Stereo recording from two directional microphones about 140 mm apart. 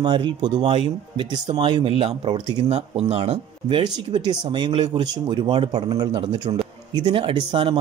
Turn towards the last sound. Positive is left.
turn(degrees=-35)  # may be behind; listen again after turning